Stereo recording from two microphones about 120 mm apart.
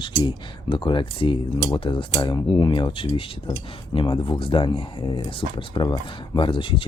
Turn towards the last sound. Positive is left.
turn(degrees=45)  # may be behind; listen again after turning